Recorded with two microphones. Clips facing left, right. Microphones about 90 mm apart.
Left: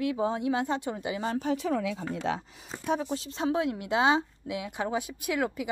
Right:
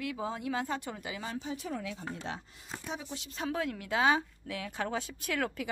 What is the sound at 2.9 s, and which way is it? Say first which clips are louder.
Speech: left 12 dB; 50° left (ahead or behind).